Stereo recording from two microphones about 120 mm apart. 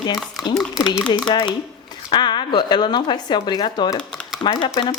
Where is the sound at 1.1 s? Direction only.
40° left (ahead or behind).